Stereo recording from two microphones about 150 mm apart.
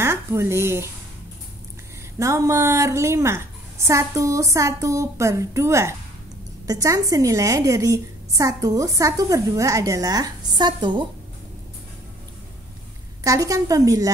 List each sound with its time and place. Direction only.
0.0 s speech: 15° right (ahead or behind)
2.1 s a woman's voice: 20° right (ahead or behind)
13.2 s a woman's voice: 20° right (ahead or behind)